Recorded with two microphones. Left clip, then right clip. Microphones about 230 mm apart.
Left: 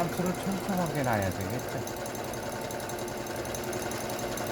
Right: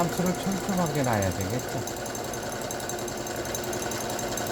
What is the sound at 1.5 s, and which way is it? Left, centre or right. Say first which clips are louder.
Jackhammer: right 3 dB; centre.